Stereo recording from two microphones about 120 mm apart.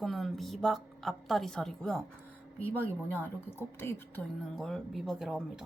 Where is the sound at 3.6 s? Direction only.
20° left (ahead or behind).